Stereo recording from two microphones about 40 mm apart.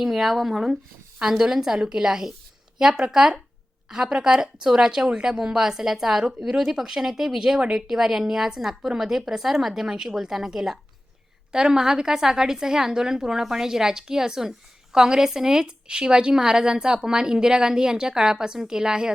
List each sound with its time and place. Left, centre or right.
0.0 s a woman's voice: centre; by 5.4 s right
5.4 s a woman's voice: centre